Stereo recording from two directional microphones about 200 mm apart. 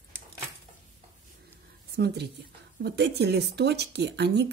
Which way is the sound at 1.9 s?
55° right (ahead or behind).